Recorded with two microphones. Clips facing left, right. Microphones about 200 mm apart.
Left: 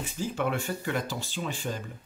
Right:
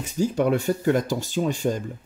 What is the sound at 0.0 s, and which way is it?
Speech, 40° right (ahead or behind).